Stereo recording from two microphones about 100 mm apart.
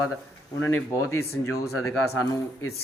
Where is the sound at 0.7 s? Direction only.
25° left (ahead or behind).